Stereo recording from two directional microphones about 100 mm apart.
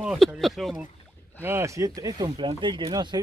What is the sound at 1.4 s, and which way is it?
Speech, 25° right (ahead or behind).